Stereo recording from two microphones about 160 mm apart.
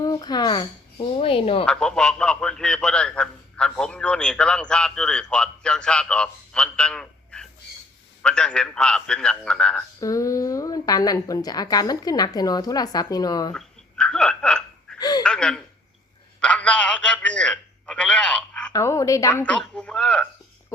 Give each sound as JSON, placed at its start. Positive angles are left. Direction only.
{"t": 0.0, "sound": "a woman's voice", "side_deg": 25}
{"t": 1.6, "sound": "a man's voice", "side_deg": 5}
{"t": 10.0, "sound": "a woman's voice", "side_deg": 20}
{"t": 13.5, "sound": "a sound", "side_deg": 5}
{"t": 14.9, "sound": "a sound", "side_deg": 25}
{"t": 15.2, "sound": "a man's voice", "side_deg": 5}
{"t": 18.7, "sound": "a woman's voice", "side_deg": 20}
{"t": 19.3, "sound": "speech", "side_deg": 10}